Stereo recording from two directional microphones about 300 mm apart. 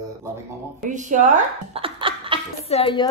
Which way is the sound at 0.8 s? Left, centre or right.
Right.